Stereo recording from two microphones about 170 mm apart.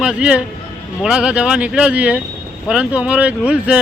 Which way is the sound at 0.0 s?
5° right (ahead or behind).